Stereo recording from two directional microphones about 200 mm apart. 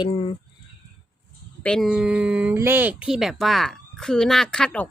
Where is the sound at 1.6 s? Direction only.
5° left (ahead or behind).